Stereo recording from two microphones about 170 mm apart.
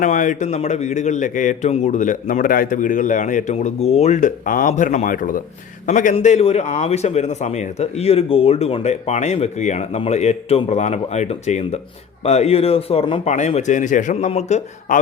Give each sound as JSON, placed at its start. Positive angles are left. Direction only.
{"t": 0.0, "sound": "a man's voice", "side_deg": 50}
{"t": 6.1, "sound": "a man's voice", "side_deg": 35}
{"t": 13.3, "sound": "a man's voice", "side_deg": 45}